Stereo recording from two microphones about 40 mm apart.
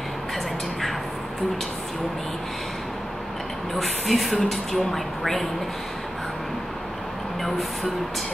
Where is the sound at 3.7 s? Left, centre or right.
Centre.